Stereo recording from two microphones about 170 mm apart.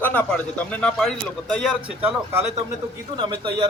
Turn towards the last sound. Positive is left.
turn(degrees=-25)  # may be behind; listen again after turning